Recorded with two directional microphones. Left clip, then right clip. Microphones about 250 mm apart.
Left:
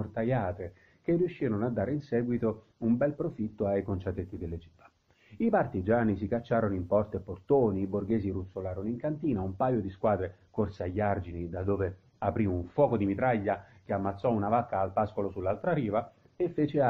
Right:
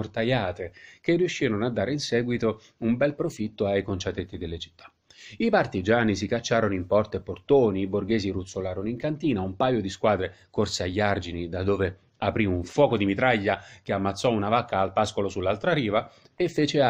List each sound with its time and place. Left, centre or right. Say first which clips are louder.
0.0 s speech: right 5 dB; right